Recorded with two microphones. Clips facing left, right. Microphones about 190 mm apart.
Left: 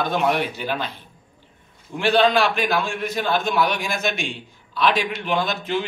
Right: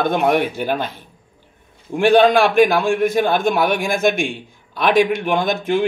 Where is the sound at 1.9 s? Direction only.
50° right (ahead or behind).